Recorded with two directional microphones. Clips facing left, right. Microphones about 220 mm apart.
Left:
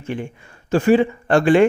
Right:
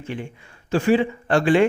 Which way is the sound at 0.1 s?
50° left (ahead or behind).